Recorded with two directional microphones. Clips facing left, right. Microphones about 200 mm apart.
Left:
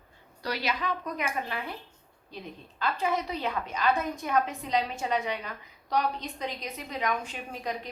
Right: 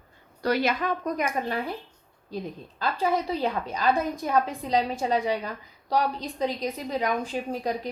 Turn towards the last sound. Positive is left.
turn(degrees=-35)  # may be behind; listen again after turning